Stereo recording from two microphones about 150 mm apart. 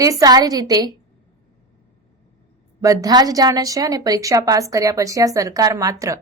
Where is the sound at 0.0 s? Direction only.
25° right (ahead or behind).